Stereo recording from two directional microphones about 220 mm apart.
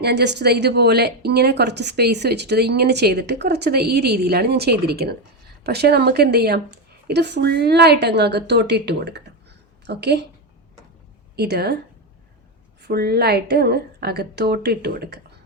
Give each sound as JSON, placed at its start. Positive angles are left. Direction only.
{"t": 0.0, "sound": "a woman's voice", "side_deg": -50}
{"t": 11.3, "sound": "speech", "side_deg": -45}
{"t": 12.8, "sound": "speech", "side_deg": -45}